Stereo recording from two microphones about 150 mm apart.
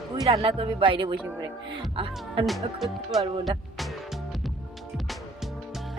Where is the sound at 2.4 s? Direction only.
Centre (ahead or behind).